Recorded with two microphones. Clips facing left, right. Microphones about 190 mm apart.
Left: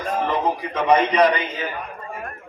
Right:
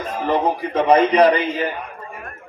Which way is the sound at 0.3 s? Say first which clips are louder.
Right 3 dB; 30° right (ahead or behind).